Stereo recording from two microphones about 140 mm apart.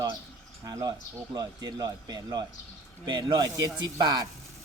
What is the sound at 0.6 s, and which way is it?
Speech, 25° right (ahead or behind).